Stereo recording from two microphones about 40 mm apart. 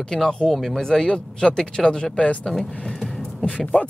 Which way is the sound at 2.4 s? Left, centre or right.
Centre.